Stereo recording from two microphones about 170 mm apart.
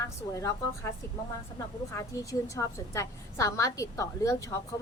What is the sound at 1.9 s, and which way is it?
A woman's voice, 15° left (ahead or behind).